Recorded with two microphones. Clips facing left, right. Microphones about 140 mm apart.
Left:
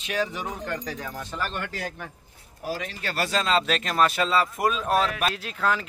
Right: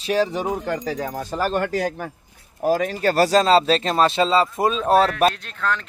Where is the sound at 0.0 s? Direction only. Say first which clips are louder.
Right 8 dB; 35° right (ahead or behind).